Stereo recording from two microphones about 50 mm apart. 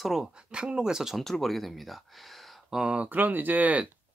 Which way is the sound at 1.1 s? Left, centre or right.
Centre.